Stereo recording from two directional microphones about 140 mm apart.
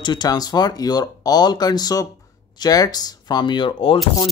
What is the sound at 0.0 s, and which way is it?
Speech, 30° left (ahead or behind).